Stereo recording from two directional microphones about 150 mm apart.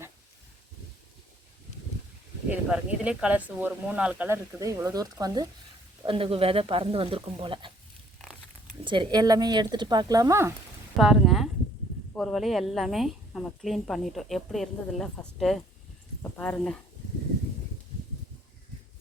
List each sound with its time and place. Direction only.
2.5 s speech: 5° right (ahead or behind)
4.6 s speech: 20° right (ahead or behind)
6.1 s speech: 40° right (ahead or behind)
8.8 s speech: 30° right (ahead or behind)
10.9 s a woman's voice: centre (ahead or behind)